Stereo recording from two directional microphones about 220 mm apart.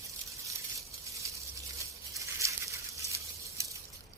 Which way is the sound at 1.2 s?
15° right (ahead or behind).